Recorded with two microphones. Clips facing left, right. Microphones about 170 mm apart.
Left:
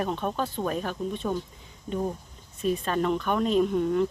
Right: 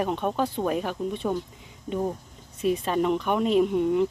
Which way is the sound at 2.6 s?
15° right (ahead or behind).